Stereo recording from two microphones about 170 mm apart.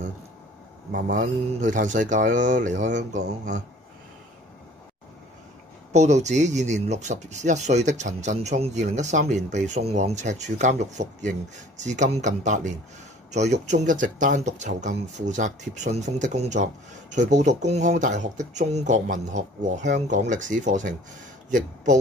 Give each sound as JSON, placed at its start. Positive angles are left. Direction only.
{"t": 0.9, "sound": "speech", "side_deg": -55}
{"t": 5.9, "sound": "speech", "side_deg": -40}